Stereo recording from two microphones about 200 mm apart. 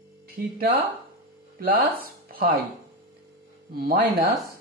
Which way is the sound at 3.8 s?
50° right (ahead or behind).